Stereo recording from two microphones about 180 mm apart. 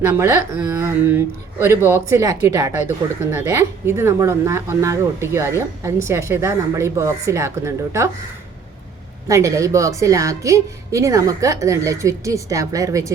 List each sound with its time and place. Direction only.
0.0 s speech: 15° right (ahead or behind)
9.2 s speech: 15° right (ahead or behind)